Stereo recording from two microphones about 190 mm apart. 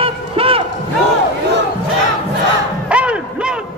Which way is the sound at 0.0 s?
30° right (ahead or behind).